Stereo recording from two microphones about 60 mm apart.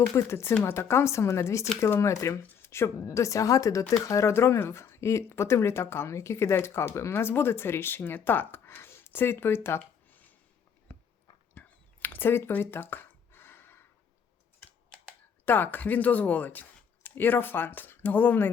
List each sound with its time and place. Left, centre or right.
0.2 s a woman's voice: left
4.4 s a woman's voice: left
11.5 s a sound: left
15.4 s speech: left